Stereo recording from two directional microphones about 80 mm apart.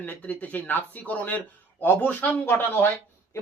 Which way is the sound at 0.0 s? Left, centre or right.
Centre.